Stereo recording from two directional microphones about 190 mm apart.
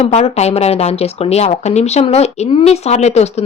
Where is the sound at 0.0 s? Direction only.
35° left (ahead or behind).